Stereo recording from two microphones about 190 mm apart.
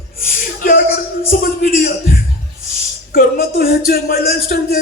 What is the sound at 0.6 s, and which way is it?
Speech, 50° left (ahead or behind).